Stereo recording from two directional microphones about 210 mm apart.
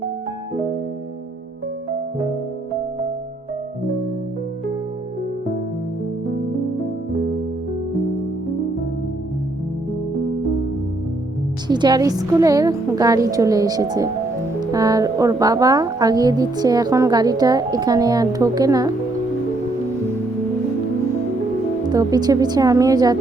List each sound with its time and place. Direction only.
11.7 s a woman's voice: 20° right (ahead or behind)
21.8 s a woman's voice: 20° right (ahead or behind)